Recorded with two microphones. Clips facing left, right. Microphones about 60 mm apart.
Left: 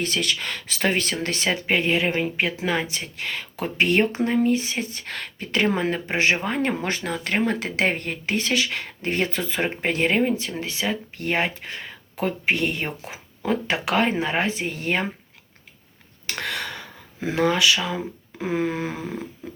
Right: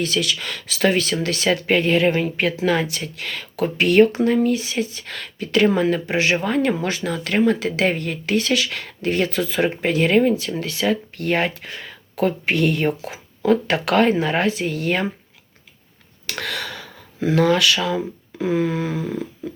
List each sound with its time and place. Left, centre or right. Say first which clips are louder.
0.0 s speech: right 3 dB; left
1.5 s speech: right 4 dB; centre
2.8 s speech: right 2 dB; left
16.4 s a sound: right 1 dB; left
17.8 s speech: right 5 dB; left